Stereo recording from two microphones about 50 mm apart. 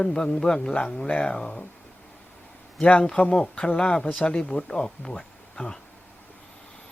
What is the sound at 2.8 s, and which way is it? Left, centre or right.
Speech, left.